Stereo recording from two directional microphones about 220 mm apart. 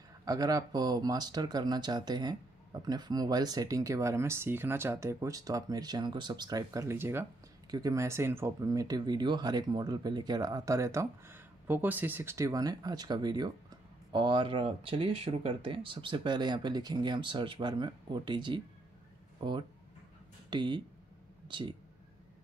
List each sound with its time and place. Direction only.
0.2 s speech: 15° right (ahead or behind)